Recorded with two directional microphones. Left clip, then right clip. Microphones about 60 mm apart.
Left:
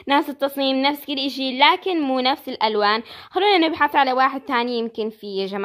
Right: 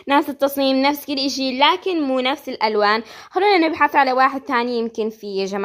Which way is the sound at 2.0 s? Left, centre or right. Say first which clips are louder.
Even; left.